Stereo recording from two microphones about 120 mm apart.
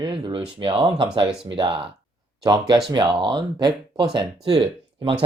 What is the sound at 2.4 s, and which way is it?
Speech, 30° right (ahead or behind).